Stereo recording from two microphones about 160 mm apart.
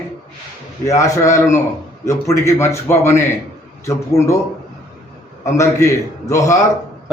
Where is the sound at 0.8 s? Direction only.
20° left (ahead or behind).